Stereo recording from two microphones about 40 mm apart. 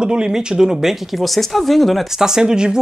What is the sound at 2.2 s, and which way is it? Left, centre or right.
Speech, centre.